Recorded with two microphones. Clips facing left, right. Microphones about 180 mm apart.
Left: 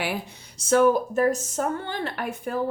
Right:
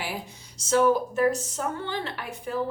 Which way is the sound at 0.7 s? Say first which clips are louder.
Left 2 dB; 50° left (ahead or behind).